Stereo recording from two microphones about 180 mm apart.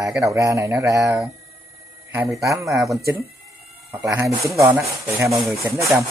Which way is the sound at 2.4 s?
15° right (ahead or behind).